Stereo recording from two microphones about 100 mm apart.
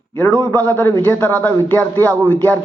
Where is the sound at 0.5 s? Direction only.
20° left (ahead or behind).